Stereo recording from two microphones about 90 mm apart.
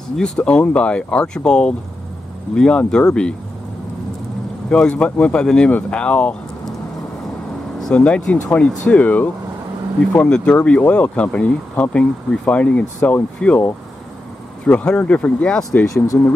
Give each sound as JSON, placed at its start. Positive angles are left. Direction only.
{"t": 0.2, "sound": "speech", "side_deg": 15}
{"t": 4.6, "sound": "speech", "side_deg": 10}
{"t": 7.8, "sound": "speech", "side_deg": 10}
{"t": 14.7, "sound": "speech", "side_deg": 15}